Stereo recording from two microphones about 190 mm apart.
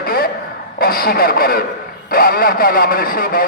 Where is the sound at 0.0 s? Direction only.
50° left (ahead or behind).